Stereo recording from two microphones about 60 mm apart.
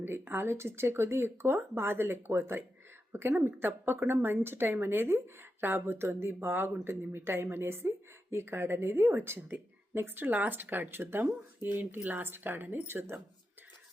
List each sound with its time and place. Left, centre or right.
0.0 s a woman's voice: right